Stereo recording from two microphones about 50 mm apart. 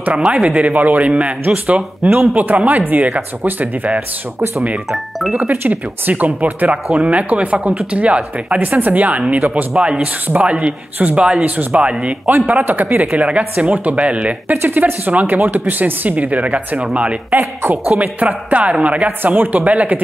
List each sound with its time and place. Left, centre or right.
0.2 s speech: centre; by 3.9 s right
5.5 s speech: right
8.5 s speech: right
12.3 s speech: right
14.5 s speech: right
19.2 s speech: right